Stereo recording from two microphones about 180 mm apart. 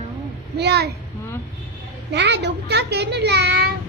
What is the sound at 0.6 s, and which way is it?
Speech, 65° right (ahead or behind).